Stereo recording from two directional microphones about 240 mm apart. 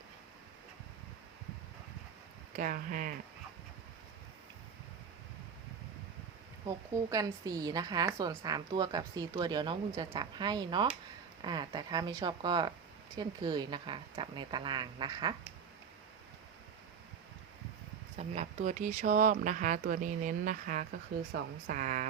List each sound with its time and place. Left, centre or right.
2.6 s speech: right
6.9 s a woman's voice: centre
18.2 s a woman's voice: right